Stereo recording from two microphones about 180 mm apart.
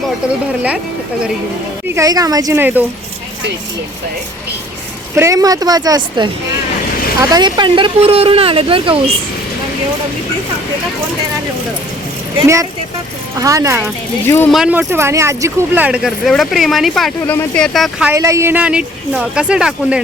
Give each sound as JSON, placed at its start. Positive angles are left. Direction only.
{"t": 2.0, "sound": "speech", "side_deg": -20}
{"t": 5.1, "sound": "speech", "side_deg": -15}
{"t": 13.4, "sound": "speech", "side_deg": -15}
{"t": 14.3, "sound": "speech", "side_deg": 10}
{"t": 14.5, "sound": "speech", "side_deg": -5}
{"t": 18.1, "sound": "speech", "side_deg": -15}